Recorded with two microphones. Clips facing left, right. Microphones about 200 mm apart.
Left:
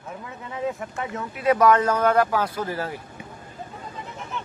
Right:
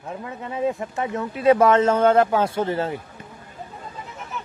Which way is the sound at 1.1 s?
30° right (ahead or behind).